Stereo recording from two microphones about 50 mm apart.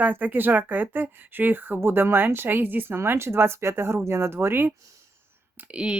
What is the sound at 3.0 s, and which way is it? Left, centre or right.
Speech, right.